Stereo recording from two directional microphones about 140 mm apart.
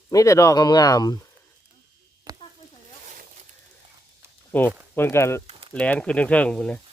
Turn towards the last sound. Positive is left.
turn(degrees=5)  # may be behind; listen again after turning